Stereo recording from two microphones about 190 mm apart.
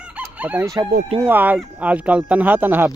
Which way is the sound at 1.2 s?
10° right (ahead or behind).